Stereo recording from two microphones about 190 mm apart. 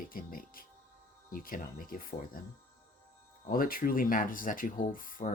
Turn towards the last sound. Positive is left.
turn(degrees=45)  # may be behind; listen again after turning